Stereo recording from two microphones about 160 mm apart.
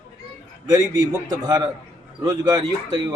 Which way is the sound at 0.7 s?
25° right (ahead or behind).